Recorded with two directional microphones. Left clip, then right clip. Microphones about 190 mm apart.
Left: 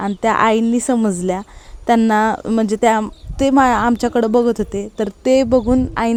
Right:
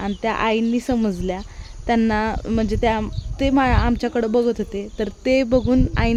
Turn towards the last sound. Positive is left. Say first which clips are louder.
# left 3 dB
turn(degrees=10)  # may be behind; listen again after turning